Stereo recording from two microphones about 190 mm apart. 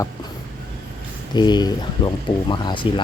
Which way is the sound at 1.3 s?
20° left (ahead or behind).